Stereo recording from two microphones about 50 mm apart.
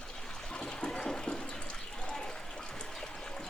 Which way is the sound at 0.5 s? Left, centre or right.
Centre.